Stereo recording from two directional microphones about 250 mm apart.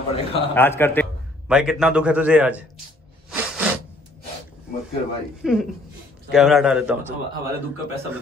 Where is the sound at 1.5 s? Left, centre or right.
Centre.